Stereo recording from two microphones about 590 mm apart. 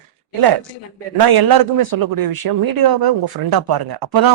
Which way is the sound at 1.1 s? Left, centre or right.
Right.